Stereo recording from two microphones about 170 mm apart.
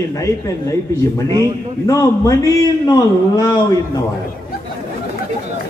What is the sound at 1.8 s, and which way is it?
A man's voice, 20° left (ahead or behind).